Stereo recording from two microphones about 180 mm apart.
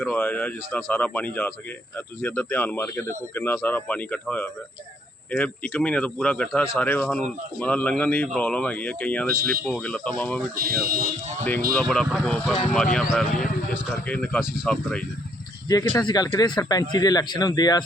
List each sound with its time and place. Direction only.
0.0 s speech: 10° left (ahead or behind)
10.6 s speech: 55° right (ahead or behind)
11.7 s speech: 5° left (ahead or behind)
15.7 s speech: 20° left (ahead or behind)